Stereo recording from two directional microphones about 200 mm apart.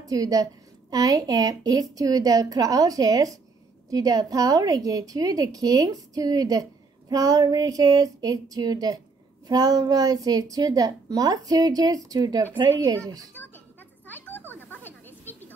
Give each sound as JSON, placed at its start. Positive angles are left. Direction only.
{"t": 0.0, "sound": "a woman's voice", "side_deg": -15}
{"t": 14.0, "sound": "a sound", "side_deg": 10}
{"t": 14.5, "sound": "snake", "side_deg": 10}